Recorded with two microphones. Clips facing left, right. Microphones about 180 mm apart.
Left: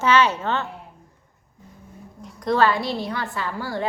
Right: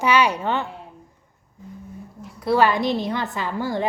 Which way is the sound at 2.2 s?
5° right (ahead or behind).